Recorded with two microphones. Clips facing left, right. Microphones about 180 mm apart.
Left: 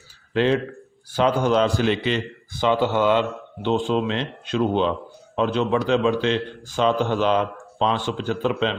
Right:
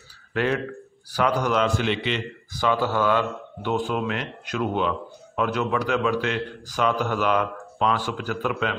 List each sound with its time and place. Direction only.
0.3 s a man's voice: 25° left (ahead or behind)
2.5 s speech: 25° left (ahead or behind)